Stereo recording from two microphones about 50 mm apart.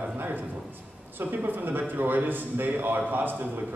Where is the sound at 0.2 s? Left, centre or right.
Right.